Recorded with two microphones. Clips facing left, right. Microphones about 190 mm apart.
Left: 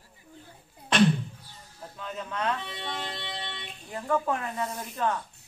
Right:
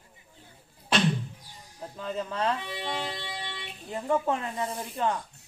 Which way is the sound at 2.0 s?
30° right (ahead or behind).